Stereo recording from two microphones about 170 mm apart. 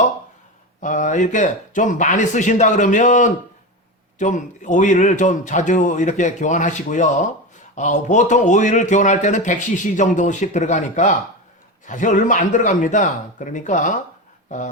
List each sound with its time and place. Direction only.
0.8 s speech: 45° left (ahead or behind)